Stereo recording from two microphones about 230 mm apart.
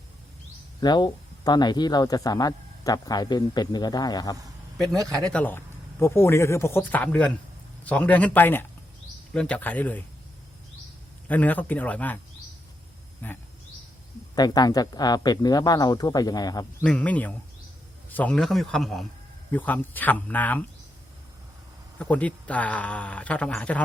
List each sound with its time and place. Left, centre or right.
0.8 s speech: centre
4.9 s speech: centre
5.2 s speech: centre
11.3 s speech: centre
13.2 s speech: centre
16.8 s speech: centre
21.9 s speech: centre